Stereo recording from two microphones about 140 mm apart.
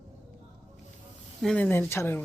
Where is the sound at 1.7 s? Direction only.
15° left (ahead or behind).